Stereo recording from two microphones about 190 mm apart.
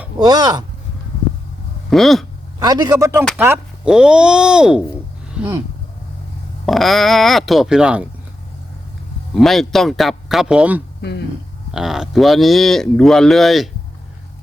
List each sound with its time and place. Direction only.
0.2 s a man's voice: 20° right (ahead or behind)
1.9 s speech: centre (ahead or behind)
2.6 s a man's voice: 20° right (ahead or behind); by 5.5 s 5° right (ahead or behind)
6.7 s speech: centre (ahead or behind)
9.3 s speech: centre (ahead or behind)